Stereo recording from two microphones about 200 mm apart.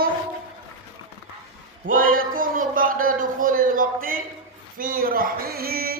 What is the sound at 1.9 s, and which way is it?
A man's voice, 45° right (ahead or behind).